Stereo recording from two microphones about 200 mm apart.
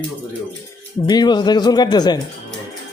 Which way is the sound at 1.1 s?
20° left (ahead or behind).